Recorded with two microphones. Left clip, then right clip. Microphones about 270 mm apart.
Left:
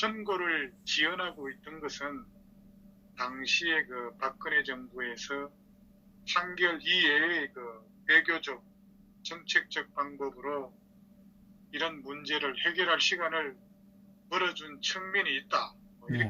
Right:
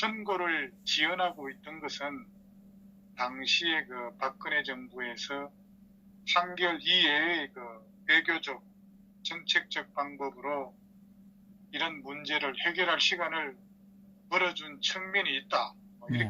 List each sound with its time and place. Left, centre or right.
0.0 s a man's voice: right
3.2 s a man's voice: right
11.7 s a man's voice: right